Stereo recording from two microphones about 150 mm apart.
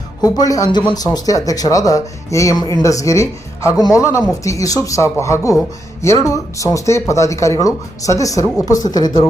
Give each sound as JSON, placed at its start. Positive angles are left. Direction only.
{"t": 0.2, "sound": "speech", "side_deg": 25}